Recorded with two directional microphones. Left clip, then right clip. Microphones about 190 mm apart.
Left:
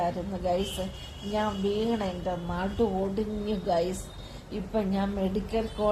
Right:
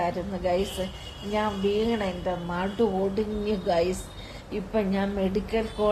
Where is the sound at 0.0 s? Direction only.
15° right (ahead or behind).